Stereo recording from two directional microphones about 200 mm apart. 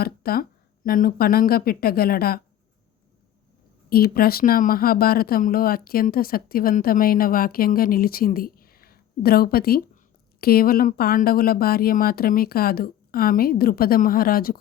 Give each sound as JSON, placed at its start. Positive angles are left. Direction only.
{"t": 0.0, "sound": "speech", "side_deg": 50}
{"t": 3.8, "sound": "speech", "side_deg": 50}